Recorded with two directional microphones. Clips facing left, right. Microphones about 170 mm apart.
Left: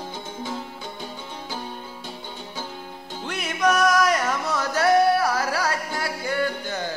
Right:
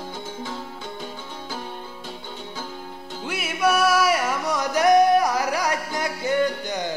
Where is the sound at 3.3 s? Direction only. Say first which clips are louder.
Even; 5° right (ahead or behind).